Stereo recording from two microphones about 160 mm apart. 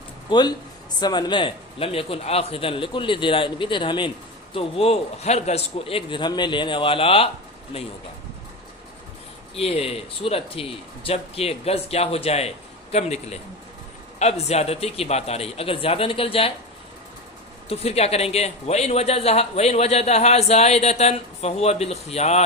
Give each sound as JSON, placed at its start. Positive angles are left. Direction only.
{"t": 0.3, "sound": "speech", "side_deg": 25}
{"t": 9.6, "sound": "a man's voice", "side_deg": 40}
{"t": 17.7, "sound": "speech", "side_deg": 40}